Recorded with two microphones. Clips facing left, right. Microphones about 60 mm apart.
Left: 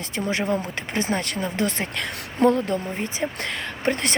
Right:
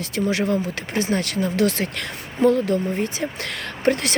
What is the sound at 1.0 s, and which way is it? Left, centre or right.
Speech, left.